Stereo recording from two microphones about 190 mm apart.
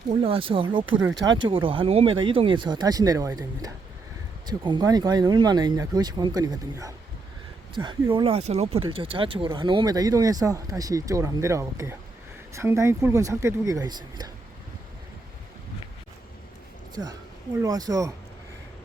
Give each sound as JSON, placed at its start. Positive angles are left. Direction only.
{"t": 0.2, "sound": "speech", "side_deg": -30}
{"t": 8.1, "sound": "speech", "side_deg": -30}
{"t": 16.9, "sound": "speech", "side_deg": -20}